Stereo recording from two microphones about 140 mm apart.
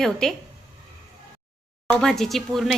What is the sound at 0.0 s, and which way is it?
Speech, 5° left (ahead or behind).